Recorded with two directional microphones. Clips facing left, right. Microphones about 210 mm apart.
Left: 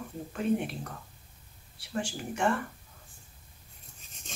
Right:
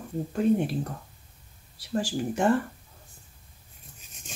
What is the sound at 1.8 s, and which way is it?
Speech, 35° right (ahead or behind).